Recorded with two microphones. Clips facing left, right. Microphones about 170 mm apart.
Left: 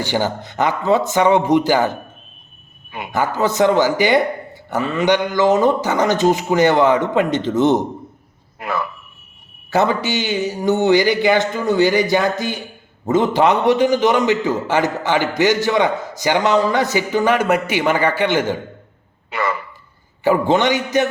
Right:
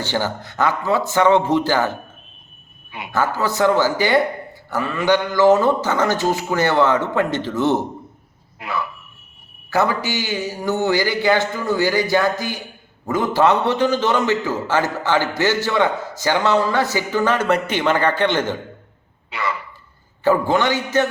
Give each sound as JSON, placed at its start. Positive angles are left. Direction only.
{"t": 0.0, "sound": "a man's voice", "side_deg": 15}
{"t": 3.1, "sound": "a man's voice", "side_deg": 15}
{"t": 8.5, "sound": "speech", "side_deg": 50}
{"t": 9.6, "sound": "a man's voice", "side_deg": 20}
{"t": 19.3, "sound": "speech", "side_deg": 50}
{"t": 20.2, "sound": "a man's voice", "side_deg": 15}